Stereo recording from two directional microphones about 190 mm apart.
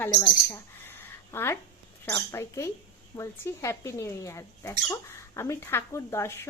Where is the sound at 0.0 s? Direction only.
15° left (ahead or behind).